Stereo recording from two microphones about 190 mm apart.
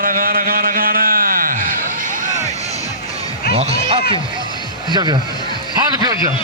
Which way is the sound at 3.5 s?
30° right (ahead or behind).